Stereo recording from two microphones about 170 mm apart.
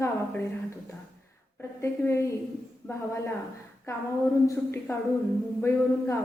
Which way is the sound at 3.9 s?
20° left (ahead or behind).